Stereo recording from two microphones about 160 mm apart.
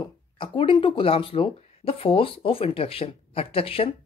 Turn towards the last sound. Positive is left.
turn(degrees=35)  # may be behind; listen again after turning